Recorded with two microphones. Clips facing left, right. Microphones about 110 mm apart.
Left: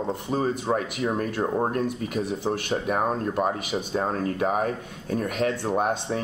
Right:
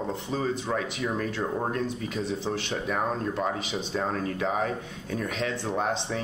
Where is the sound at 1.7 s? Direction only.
55° left (ahead or behind).